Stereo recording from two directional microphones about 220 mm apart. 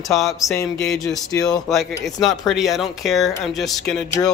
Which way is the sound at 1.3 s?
15° left (ahead or behind).